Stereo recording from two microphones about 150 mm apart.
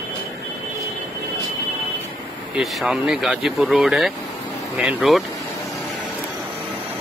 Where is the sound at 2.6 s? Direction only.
Centre (ahead or behind).